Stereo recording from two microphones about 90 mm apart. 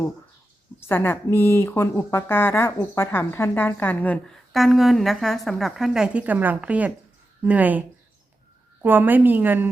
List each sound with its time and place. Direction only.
0.8 s speech: 25° left (ahead or behind)
4.3 s a woman's voice: centre (ahead or behind); by 9.6 s 20° right (ahead or behind)